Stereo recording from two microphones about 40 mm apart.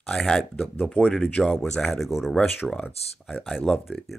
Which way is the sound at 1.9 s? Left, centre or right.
Centre.